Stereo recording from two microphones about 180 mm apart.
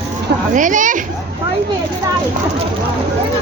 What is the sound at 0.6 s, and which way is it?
Speech, 45° right (ahead or behind).